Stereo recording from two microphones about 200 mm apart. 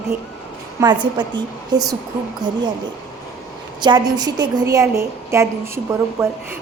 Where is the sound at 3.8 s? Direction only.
20° right (ahead or behind).